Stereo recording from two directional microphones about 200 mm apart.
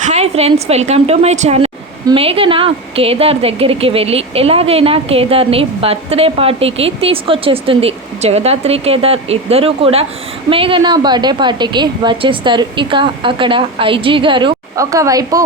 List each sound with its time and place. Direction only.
0.0 s a woman's voice: 35° right (ahead or behind); by 15.4 s 15° right (ahead or behind)